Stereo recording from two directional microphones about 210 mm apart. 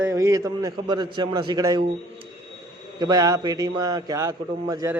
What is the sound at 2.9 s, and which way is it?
A man's voice, 20° right (ahead or behind).